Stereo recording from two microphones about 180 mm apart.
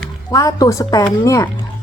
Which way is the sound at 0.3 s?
20° left (ahead or behind).